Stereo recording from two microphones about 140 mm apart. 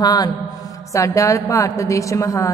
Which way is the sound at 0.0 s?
25° left (ahead or behind).